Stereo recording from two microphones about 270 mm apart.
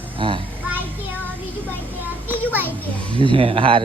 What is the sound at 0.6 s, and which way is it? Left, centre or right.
Music, centre.